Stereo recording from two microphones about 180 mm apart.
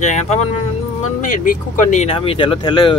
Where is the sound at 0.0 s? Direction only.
40° left (ahead or behind).